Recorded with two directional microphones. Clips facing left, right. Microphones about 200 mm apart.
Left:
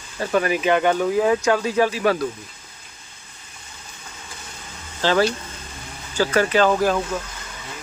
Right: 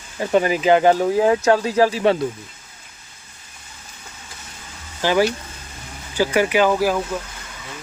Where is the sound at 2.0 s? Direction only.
25° right (ahead or behind).